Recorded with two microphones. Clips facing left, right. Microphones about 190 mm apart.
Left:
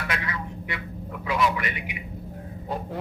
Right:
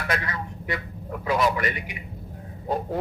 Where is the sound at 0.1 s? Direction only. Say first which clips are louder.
Right 2 dB; 40° right (ahead or behind).